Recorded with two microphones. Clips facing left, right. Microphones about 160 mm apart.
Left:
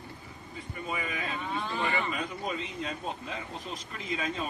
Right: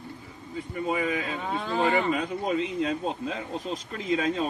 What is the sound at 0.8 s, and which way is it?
A man's voice, 85° right.